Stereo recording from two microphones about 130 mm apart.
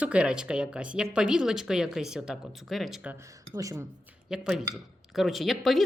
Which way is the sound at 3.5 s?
25° right (ahead or behind).